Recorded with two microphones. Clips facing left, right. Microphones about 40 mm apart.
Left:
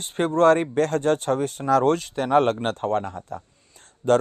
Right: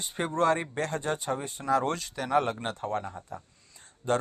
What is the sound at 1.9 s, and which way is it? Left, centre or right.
Speech, left.